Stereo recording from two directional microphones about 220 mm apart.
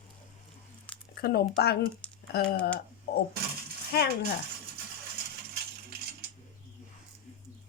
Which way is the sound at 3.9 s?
45° left (ahead or behind).